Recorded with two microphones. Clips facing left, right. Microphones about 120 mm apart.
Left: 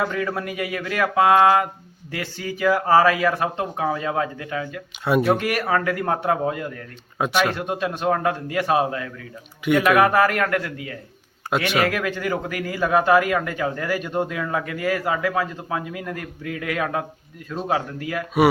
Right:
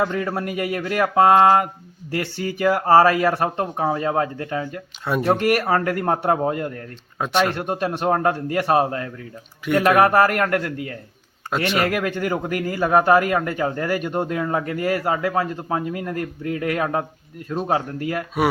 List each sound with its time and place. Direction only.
0.0 s a man's voice: 35° right (ahead or behind)
2.6 s a man's voice: 40° right (ahead or behind)
5.4 s a man's voice: 50° right (ahead or behind)
5.6 s a man's voice: 40° right (ahead or behind)
7.2 s speech: centre (ahead or behind)
7.5 s a man's voice: 45° right (ahead or behind)
9.7 s speech: centre (ahead or behind)
10.0 s a man's voice: 40° right (ahead or behind)
11.5 s speech: centre (ahead or behind)
12.0 s a man's voice: 40° right (ahead or behind)